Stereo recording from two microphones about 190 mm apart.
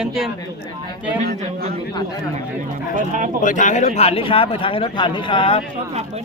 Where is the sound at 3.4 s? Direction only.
40° left (ahead or behind).